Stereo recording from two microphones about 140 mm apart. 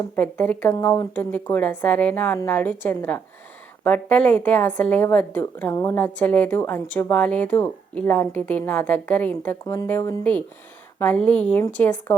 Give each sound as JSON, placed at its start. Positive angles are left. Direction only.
{"t": 0.2, "sound": "a woman's voice", "side_deg": 10}